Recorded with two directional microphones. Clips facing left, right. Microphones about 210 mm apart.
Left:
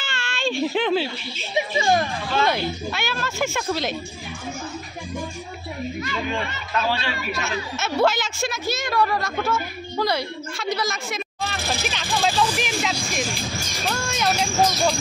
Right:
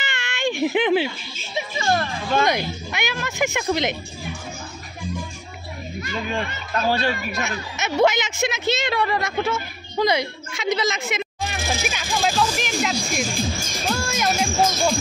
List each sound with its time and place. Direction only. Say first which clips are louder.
0.0 s baby cry: right 2 dB; 20° right (ahead or behind)
1.8 s speech: left 2 dB; 15° left (ahead or behind)
2.4 s speech: even; 15° right (ahead or behind)
6.7 s speech: right 4 dB; 45° right (ahead or behind)
7.4 s a woman's voice: left 1 dB; 15° right (ahead or behind)